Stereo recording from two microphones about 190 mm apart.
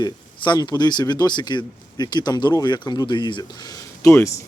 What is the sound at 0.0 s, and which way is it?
Speech, 20° left (ahead or behind).